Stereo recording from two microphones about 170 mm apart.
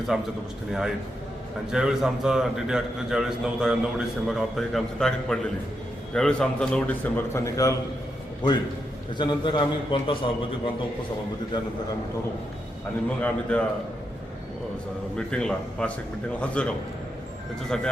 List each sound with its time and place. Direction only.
0.1 s a man's voice: 5° right (ahead or behind); by 10.2 s 30° left (ahead or behind)
13.1 s a man's voice: 10° left (ahead or behind)
15.1 s a man's voice: 5° left (ahead or behind)